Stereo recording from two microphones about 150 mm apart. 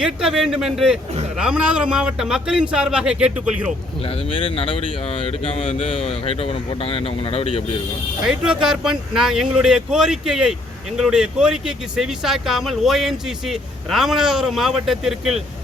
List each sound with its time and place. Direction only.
0.0 s speech: 5° right (ahead or behind)
4.0 s speech: 35° left (ahead or behind)
8.2 s speech: 5° right (ahead or behind)